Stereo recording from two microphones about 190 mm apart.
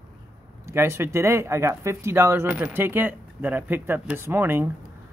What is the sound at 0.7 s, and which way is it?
Speech, 15° right (ahead or behind).